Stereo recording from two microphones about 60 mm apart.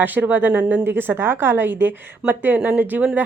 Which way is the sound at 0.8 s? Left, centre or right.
Right.